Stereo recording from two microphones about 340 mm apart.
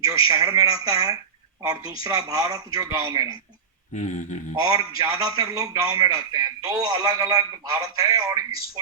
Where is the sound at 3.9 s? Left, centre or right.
Left.